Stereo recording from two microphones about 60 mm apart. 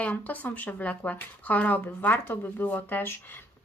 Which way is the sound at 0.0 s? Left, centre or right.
Left.